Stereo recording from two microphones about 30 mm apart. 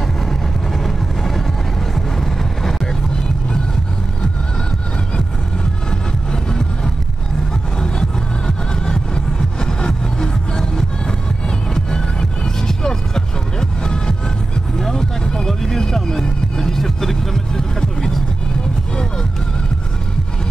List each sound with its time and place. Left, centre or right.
0.0 s vehicle: centre
7.8 s music: left
14.8 s a sound: centre
15.3 s music: centre